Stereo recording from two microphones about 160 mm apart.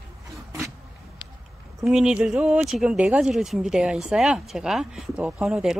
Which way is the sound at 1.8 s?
5° right (ahead or behind).